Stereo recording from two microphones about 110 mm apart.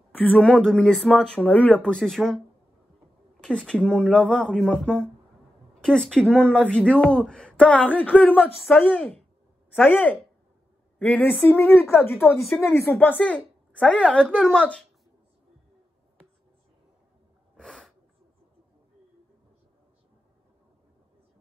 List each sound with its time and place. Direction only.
0.2 s speech: 10° left (ahead or behind)
3.4 s speech: 5° left (ahead or behind)
12.4 s speech: centre (ahead or behind)
13.0 s speech: 15° left (ahead or behind)
17.6 s a sound: 5° left (ahead or behind)